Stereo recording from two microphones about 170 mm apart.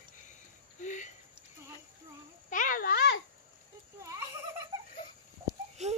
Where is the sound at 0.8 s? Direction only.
45° left (ahead or behind).